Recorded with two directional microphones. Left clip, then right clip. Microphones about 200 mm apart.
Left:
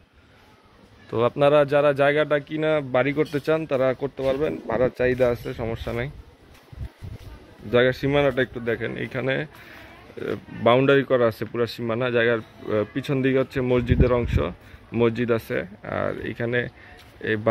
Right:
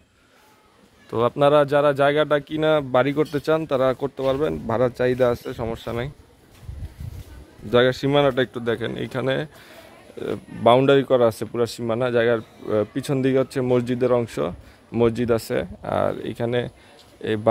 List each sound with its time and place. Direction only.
1.1 s speech: 10° right (ahead or behind)
7.7 s speech: 15° right (ahead or behind)
10.6 s speech: 10° right (ahead or behind)